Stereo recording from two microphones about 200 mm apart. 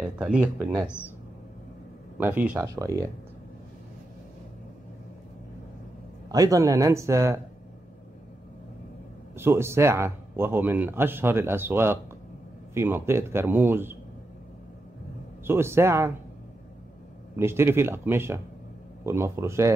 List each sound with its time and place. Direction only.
0.0 s speech: 5° right (ahead or behind)
2.1 s a man's voice: 10° right (ahead or behind)
6.2 s a man's voice: 15° right (ahead or behind)
9.4 s a man's voice: 10° right (ahead or behind)
15.4 s a man's voice: 10° right (ahead or behind)
17.4 s a man's voice: 10° right (ahead or behind)